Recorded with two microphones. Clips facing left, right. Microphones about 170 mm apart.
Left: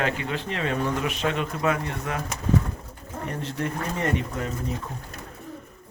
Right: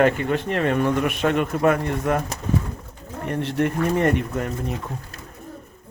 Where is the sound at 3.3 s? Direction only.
65° right (ahead or behind).